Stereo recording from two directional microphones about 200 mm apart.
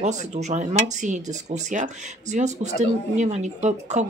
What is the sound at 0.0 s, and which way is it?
Speech, 35° right (ahead or behind).